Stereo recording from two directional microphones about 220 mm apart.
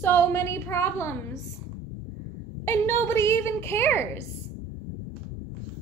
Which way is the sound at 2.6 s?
10° left (ahead or behind).